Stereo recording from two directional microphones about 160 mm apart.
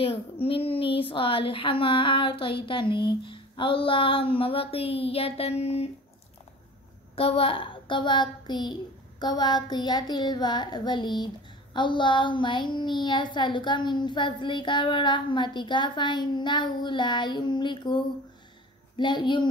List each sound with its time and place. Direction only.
0.0 s a woman's voice: 35° left (ahead or behind)
7.2 s a woman's voice: 35° left (ahead or behind)